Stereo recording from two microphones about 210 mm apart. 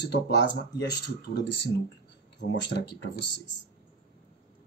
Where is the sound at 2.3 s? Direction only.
55° left (ahead or behind).